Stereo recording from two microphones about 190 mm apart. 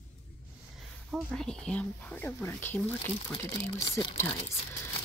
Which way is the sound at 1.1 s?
Centre (ahead or behind).